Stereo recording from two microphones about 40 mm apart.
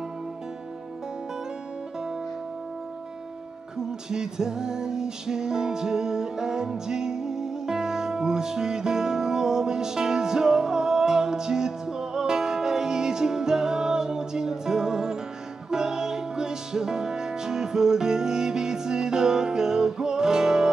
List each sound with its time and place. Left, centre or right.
3.7 s music: centre